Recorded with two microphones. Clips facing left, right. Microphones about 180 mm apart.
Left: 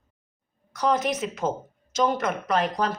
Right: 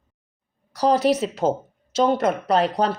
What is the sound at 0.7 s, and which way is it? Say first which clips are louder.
A woman's voice: right 6 dB; 35° right (ahead or behind).